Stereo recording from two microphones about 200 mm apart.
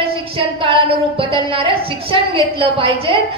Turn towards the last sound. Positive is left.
turn(degrees=-25)  # may be behind; listen again after turning